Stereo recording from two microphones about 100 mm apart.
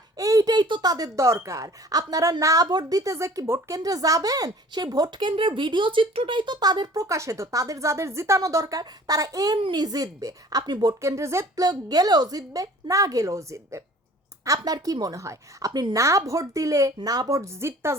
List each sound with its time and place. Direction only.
0.2 s speech: 35° right (ahead or behind)
5.3 s speech: 55° right (ahead or behind)
11.0 s speech: 30° right (ahead or behind)
11.6 s speech: 40° right (ahead or behind)